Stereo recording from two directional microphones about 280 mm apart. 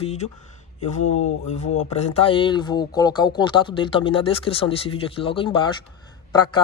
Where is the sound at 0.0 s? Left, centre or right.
Left.